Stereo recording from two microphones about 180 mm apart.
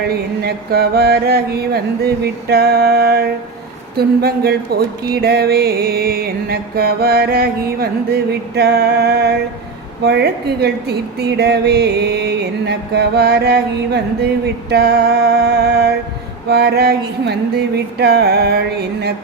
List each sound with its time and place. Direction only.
0.4 s a woman's voice: 60° right (ahead or behind)